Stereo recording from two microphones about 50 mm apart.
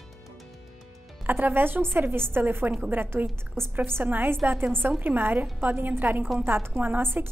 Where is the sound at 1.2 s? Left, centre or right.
Right.